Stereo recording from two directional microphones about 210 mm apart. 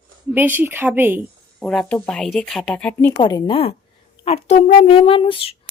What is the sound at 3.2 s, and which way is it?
A woman's voice, 20° left (ahead or behind).